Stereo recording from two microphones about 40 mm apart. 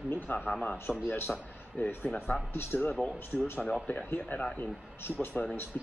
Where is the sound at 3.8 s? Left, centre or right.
Left.